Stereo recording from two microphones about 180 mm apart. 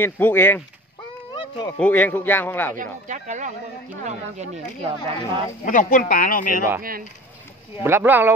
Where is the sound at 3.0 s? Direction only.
45° right (ahead or behind).